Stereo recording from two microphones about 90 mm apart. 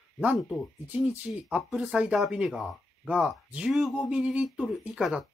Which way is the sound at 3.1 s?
10° right (ahead or behind).